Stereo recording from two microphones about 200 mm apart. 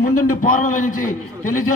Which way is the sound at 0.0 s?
40° left (ahead or behind).